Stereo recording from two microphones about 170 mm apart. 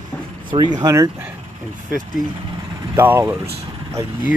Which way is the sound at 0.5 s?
35° right (ahead or behind).